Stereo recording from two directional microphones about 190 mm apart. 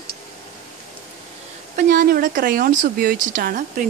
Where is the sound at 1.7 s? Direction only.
45° right (ahead or behind).